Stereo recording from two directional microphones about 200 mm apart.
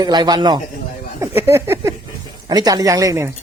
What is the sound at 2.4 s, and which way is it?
Speech, 20° right (ahead or behind).